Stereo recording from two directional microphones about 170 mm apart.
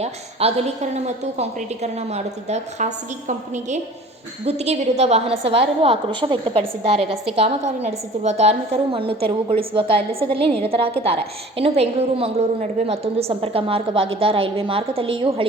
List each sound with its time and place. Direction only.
0.0 s a woman's voice: 35° right (ahead or behind)